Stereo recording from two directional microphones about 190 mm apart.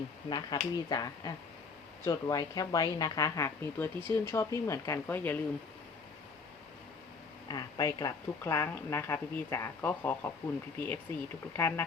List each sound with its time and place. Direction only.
0.3 s a woman's voice: 20° left (ahead or behind)
7.4 s a woman's voice: 20° left (ahead or behind)